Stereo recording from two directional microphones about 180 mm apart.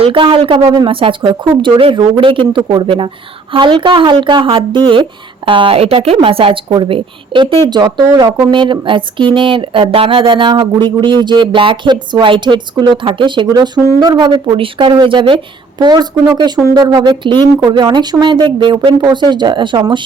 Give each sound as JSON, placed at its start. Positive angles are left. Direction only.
{"t": 0.0, "sound": "a woman's voice", "side_deg": -30}